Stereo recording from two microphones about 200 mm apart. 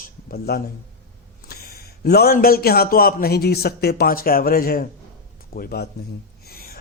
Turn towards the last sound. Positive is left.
turn(degrees=50)  # may be behind; listen again after turning